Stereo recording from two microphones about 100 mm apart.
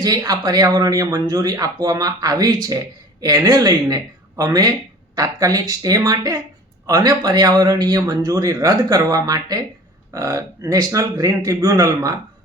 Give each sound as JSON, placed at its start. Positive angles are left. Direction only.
{"t": 0.0, "sound": "speech", "side_deg": -35}